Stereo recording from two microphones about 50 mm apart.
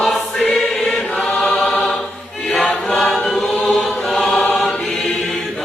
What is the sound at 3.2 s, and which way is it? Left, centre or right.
Chant, centre.